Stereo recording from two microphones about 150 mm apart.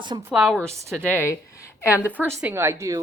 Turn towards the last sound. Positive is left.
turn(degrees=-20)  # may be behind; listen again after turning